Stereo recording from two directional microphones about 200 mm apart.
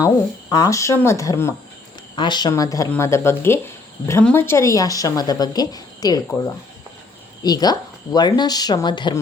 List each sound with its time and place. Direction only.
0.5 s speech: 15° left (ahead or behind)